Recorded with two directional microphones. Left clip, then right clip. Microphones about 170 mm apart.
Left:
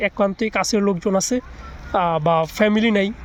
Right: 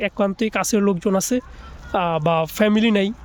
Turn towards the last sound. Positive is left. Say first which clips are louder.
# even
turn(degrees=-35)  # may be behind; listen again after turning